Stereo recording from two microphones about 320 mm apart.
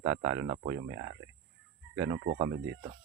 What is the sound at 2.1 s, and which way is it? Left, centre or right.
Speech, right.